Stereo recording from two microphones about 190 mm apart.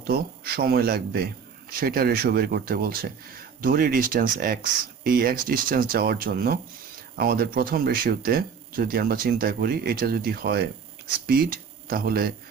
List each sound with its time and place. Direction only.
0.1 s a man's voice: 55° right (ahead or behind)